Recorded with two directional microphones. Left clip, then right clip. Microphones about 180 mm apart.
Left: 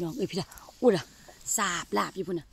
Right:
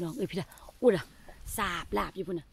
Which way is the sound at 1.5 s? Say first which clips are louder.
Left 3 dB; 35° left (ahead or behind).